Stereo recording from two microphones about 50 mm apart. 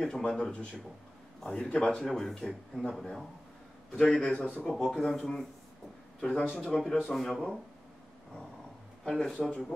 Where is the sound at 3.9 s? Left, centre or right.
Left.